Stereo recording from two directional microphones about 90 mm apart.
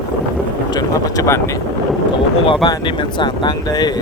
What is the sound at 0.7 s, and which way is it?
Speech, 45° left (ahead or behind).